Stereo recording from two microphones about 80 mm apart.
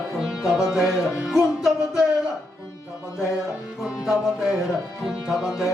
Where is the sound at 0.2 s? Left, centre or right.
Centre.